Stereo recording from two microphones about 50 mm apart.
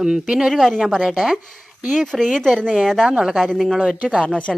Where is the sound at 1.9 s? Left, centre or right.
Centre.